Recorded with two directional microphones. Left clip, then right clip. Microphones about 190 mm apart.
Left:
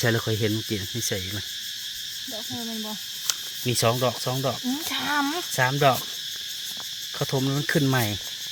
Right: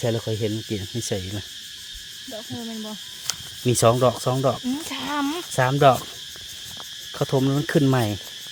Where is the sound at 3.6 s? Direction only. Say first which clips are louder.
Right 5 dB; 40° right (ahead or behind).